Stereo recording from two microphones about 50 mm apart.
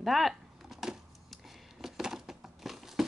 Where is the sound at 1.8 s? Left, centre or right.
Centre.